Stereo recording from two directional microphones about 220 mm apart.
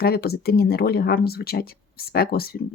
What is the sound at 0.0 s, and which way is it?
Speech, 45° left (ahead or behind).